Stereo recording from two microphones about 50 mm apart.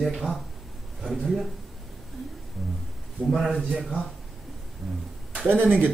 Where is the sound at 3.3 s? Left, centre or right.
Centre.